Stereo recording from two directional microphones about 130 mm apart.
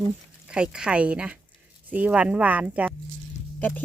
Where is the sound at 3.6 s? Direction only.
15° left (ahead or behind).